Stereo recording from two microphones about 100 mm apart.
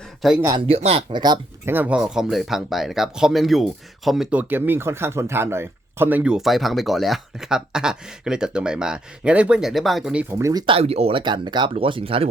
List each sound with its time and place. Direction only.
0.2 s speech: centre (ahead or behind)
0.7 s speech: 90° right
1.1 s speech: 45° right (ahead or behind)
1.6 s speech: 20° right (ahead or behind); by 4.4 s 5° right (ahead or behind)
4.4 s speech: 20° right (ahead or behind)
6.3 s speech: centre (ahead or behind)
10.2 s speech: 30° right (ahead or behind)
10.7 s speech: 85° right
11.2 s speech: 50° right (ahead or behind)
11.7 s speech: 65° right (ahead or behind)